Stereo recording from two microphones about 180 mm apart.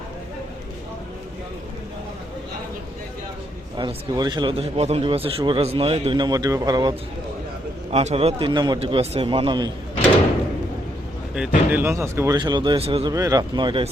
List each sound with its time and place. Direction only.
3.8 s a man's voice: 25° right (ahead or behind)
7.9 s a man's voice: 35° right (ahead or behind)
11.3 s a man's voice: 10° right (ahead or behind); by 13.1 s 30° right (ahead or behind)
13.1 s a man's voice: 20° right (ahead or behind)